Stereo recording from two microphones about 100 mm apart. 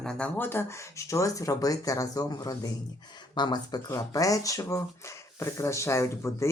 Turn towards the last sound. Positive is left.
turn(degrees=30)  # may be behind; listen again after turning